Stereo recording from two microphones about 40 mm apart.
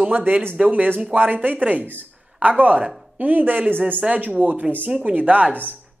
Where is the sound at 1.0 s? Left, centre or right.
Right.